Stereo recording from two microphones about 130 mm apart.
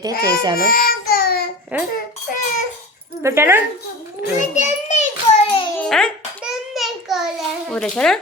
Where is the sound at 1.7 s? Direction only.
10° right (ahead or behind).